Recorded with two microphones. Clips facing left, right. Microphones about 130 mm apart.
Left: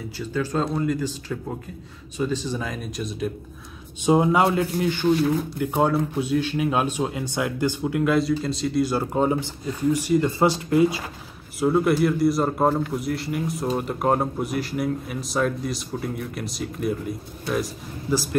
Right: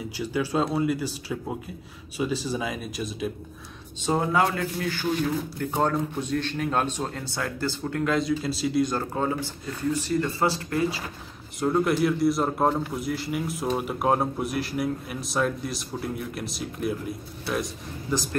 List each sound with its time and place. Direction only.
0.2 s speech: 10° right (ahead or behind)
4.0 s speech: 15° left (ahead or behind); by 8.9 s centre (ahead or behind)
8.9 s speech: 15° left (ahead or behind)
11.6 s speech: 5° left (ahead or behind)